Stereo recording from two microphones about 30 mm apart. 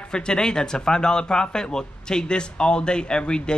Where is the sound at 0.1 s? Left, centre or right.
Left.